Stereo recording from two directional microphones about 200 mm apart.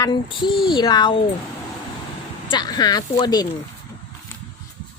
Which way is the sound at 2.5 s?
20° left (ahead or behind).